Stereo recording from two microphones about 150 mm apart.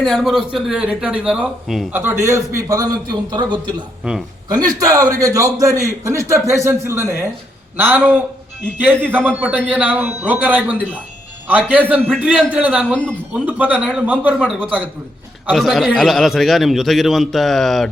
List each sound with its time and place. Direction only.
0.0 s a man's voice: centre (ahead or behind)
1.9 s a man's voice: 15° right (ahead or behind); by 3.8 s 30° right (ahead or behind)
4.0 s a man's voice: 5° right (ahead or behind)
4.4 s a man's voice: 25° right (ahead or behind)
9.2 s speech: 10° right (ahead or behind)
12.9 s speech: 10° left (ahead or behind)
13.3 s a man's voice: 10° right (ahead or behind)